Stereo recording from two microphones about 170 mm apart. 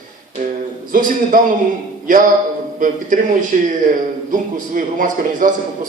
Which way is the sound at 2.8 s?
50° right (ahead or behind).